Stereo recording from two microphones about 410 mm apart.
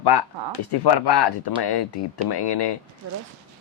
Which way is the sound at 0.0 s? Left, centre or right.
Left.